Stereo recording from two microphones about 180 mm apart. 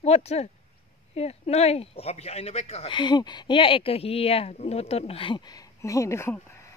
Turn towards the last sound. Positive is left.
turn(degrees=15)  # may be behind; listen again after turning